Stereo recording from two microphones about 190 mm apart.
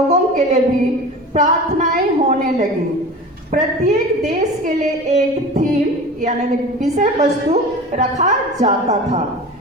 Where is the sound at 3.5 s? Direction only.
40° right (ahead or behind).